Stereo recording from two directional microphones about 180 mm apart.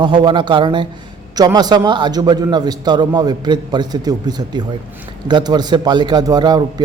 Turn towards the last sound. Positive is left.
turn(degrees=-25)  # may be behind; listen again after turning